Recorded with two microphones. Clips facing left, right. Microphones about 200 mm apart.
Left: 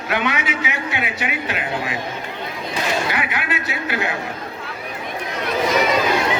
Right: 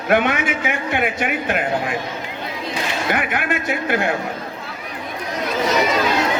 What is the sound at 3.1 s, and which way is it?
A man's voice, 50° right (ahead or behind).